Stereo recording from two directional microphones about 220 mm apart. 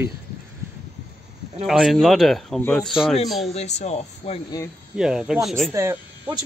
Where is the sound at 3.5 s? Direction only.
30° left (ahead or behind).